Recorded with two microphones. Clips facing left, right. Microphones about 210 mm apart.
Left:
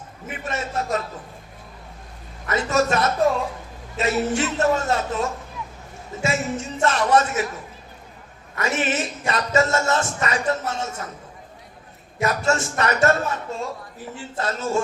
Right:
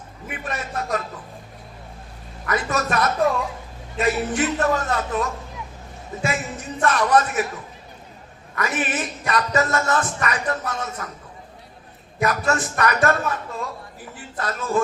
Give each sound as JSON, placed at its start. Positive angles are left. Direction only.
{"t": 0.3, "sound": "speech", "side_deg": 25}
{"t": 2.5, "sound": "speech", "side_deg": 25}
{"t": 8.5, "sound": "speech", "side_deg": 25}
{"t": 12.2, "sound": "speech", "side_deg": 25}